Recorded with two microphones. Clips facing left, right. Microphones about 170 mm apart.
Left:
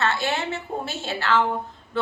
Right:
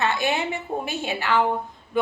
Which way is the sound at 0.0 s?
15° right (ahead or behind).